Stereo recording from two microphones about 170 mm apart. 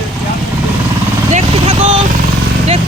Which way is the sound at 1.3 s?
40° right (ahead or behind).